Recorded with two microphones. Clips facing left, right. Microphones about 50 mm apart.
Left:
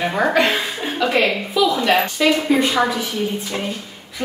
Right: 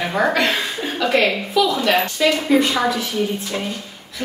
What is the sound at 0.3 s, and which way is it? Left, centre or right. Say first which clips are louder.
A woman's voice: left 2 dB; centre.